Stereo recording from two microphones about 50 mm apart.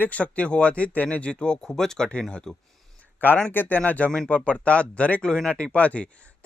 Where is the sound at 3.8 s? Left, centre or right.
Left.